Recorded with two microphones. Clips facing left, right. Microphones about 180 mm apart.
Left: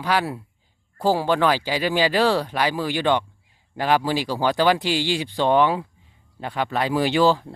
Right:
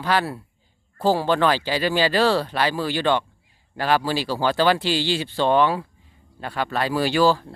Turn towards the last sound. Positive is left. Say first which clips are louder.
# even
turn(degrees=20)  # may be behind; listen again after turning